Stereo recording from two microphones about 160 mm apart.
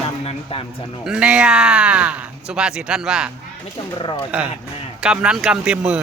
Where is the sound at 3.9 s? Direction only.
25° left (ahead or behind).